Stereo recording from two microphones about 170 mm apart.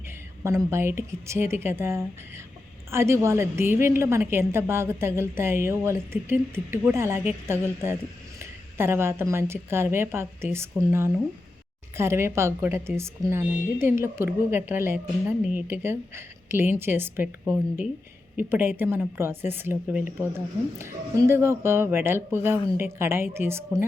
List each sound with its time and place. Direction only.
0.4 s a woman's voice: 15° right (ahead or behind)